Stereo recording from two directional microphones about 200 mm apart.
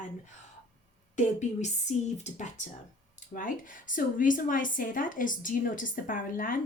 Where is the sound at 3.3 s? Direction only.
45° left (ahead or behind).